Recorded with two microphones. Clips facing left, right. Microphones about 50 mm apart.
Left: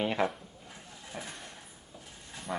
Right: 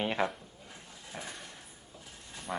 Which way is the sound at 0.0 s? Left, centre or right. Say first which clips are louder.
Left 2 dB; centre.